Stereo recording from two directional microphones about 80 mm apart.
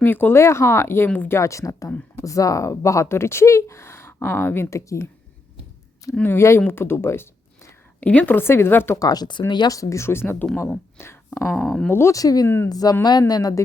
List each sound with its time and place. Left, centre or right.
0.0 s speech: left
1.4 s speech: left
6.2 s speech: left
8.0 s a woman's voice: centre
8.4 s speech: left
9.0 s speech: left
9.7 s speech: left
10.3 s a woman's voice: centre
10.6 s speech: left
11.5 s a woman's voice: centre
11.9 s speech: left
12.1 s speech: left